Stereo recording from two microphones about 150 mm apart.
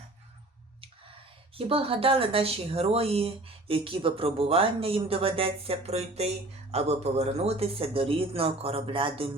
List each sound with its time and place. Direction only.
1.5 s speech: 40° right (ahead or behind)